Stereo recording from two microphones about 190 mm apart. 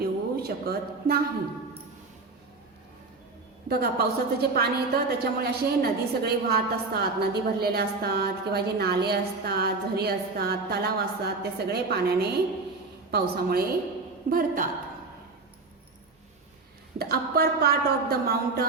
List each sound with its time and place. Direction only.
0.0 s a sound: 55° right (ahead or behind)
3.7 s a woman's voice: 55° right (ahead or behind)
17.0 s a woman's voice: 55° right (ahead or behind)